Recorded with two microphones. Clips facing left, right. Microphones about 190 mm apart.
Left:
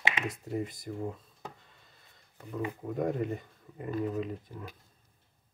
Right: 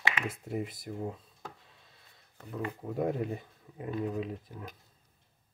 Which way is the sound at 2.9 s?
5° right (ahead or behind).